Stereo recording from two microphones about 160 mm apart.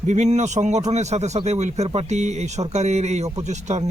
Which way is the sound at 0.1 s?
45° right (ahead or behind).